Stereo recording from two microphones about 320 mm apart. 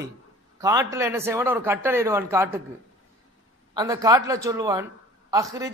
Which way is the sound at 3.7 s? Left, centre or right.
Centre.